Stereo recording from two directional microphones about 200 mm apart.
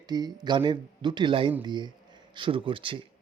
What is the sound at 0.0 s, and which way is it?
Speech, 20° right (ahead or behind).